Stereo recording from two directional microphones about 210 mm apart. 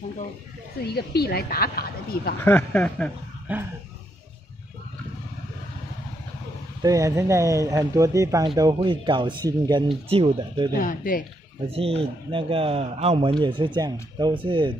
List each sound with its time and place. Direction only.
0.8 s a woman's voice: 50° left (ahead or behind)
2.4 s speech: 5° left (ahead or behind)
6.8 s speech: 15° right (ahead or behind)
10.7 s speech: 40° left (ahead or behind)
11.6 s speech: 30° right (ahead or behind)